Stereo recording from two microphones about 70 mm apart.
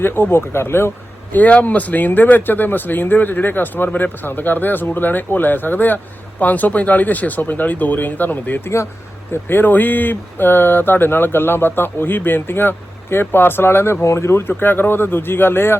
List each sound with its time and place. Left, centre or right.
0.0 s speech: left
1.4 s speech: left